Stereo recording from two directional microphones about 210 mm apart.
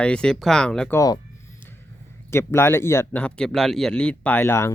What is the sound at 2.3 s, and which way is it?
Speech, 10° left (ahead or behind).